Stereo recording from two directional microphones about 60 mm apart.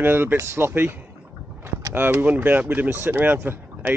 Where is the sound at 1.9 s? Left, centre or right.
Right.